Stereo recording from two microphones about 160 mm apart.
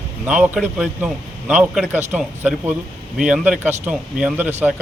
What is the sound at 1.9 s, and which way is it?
Speech, 45° right (ahead or behind).